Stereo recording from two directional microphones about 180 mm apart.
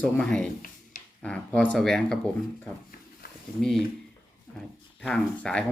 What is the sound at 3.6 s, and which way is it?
Speech, centre (ahead or behind).